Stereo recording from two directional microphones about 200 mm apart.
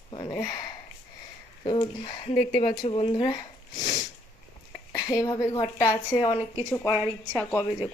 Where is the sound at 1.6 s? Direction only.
25° left (ahead or behind).